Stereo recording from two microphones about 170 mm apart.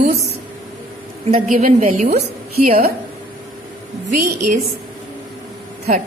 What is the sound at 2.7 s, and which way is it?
Speech, 60° right (ahead or behind).